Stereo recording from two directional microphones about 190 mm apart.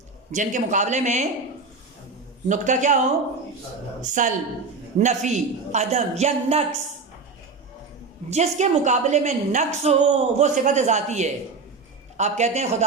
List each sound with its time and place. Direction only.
0.3 s a woman's voice: 40° right (ahead or behind)
2.5 s a woman's voice: 40° right (ahead or behind)
4.1 s a woman's voice: 40° right (ahead or behind)
8.3 s a woman's voice: 35° right (ahead or behind)